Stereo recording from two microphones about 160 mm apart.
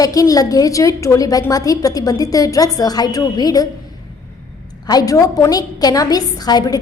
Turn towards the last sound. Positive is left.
turn(degrees=25)  # may be behind; listen again after turning